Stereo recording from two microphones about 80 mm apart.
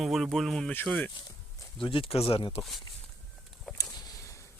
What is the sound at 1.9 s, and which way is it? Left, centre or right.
Speech, left.